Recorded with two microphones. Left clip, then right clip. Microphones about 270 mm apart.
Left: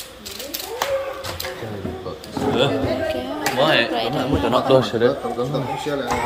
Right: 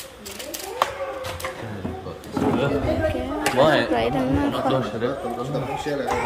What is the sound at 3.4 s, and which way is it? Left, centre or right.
Speech, right.